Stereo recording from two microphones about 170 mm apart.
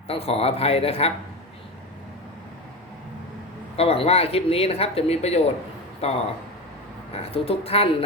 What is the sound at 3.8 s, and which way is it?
Speech, 35° left (ahead or behind).